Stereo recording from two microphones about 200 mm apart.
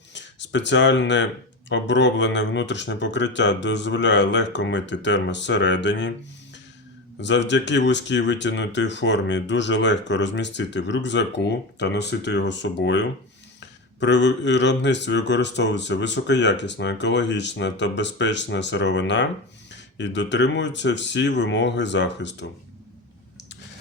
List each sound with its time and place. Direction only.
0.1 s speech: 60° left (ahead or behind)
7.2 s speech: 60° left (ahead or behind)